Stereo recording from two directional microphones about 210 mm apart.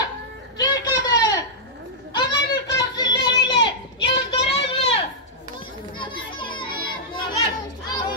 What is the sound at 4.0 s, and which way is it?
Child singing, 25° left (ahead or behind).